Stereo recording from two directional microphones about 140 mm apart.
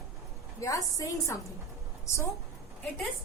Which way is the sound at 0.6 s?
25° left (ahead or behind).